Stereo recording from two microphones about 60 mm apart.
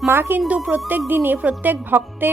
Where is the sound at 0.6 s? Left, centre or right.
Right.